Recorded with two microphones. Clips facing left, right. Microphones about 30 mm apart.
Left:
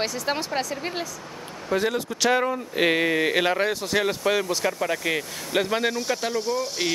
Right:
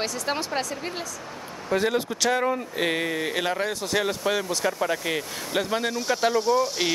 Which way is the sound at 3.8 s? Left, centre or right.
Centre.